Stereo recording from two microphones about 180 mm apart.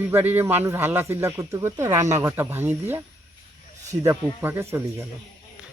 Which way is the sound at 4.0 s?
15° right (ahead or behind).